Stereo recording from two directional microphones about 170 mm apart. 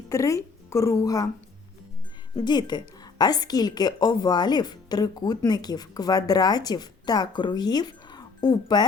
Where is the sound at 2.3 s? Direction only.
25° left (ahead or behind).